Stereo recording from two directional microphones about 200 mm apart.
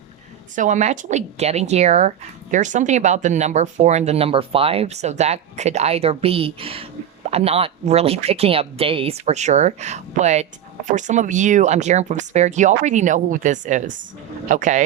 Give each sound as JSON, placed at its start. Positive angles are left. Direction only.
{"t": 0.5, "sound": "speech", "side_deg": -40}